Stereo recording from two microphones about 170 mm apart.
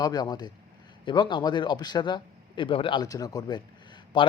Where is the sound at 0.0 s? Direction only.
25° left (ahead or behind).